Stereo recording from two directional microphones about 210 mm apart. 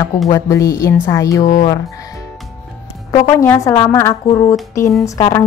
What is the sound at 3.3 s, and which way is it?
Speech, 15° left (ahead or behind).